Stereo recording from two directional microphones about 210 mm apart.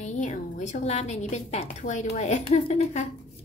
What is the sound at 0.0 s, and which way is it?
A woman's voice, 35° left (ahead or behind).